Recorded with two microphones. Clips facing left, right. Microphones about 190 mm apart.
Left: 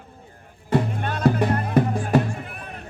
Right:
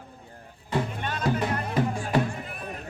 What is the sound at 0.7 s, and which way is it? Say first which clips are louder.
Music: left 6 dB; 55° left (ahead or behind).